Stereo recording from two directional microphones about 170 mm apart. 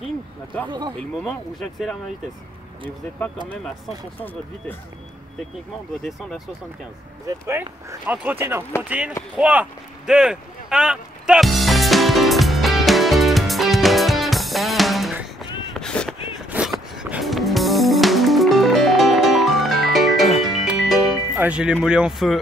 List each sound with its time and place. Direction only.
0.7 s speech: 25° right (ahead or behind)
0.9 s speech: 5° left (ahead or behind)
3.4 s speech: 5° left (ahead or behind)
6.0 s speech: centre (ahead or behind)
7.2 s speech: 15° right (ahead or behind)
9.4 s a sound: 10° right (ahead or behind)
16.9 s music: 5° right (ahead or behind)
21.8 s speech: 5° right (ahead or behind)